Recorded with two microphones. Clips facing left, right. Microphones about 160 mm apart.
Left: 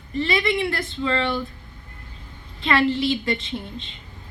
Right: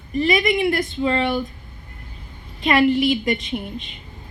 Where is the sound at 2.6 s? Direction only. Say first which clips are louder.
Right 4 dB; 15° right (ahead or behind).